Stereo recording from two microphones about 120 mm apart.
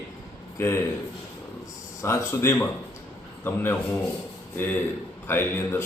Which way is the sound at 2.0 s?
20° left (ahead or behind).